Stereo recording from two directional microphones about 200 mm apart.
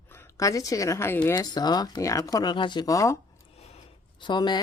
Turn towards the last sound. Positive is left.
turn(degrees=20)  # may be behind; listen again after turning